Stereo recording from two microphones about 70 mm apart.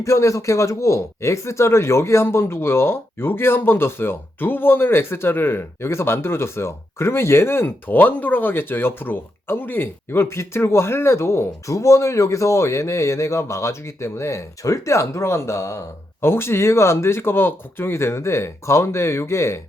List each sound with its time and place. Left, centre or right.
0.0 s speech: left